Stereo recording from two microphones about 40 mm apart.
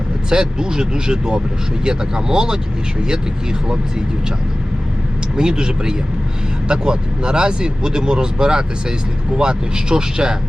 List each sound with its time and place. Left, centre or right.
0.3 s speech: centre
5.4 s speech: centre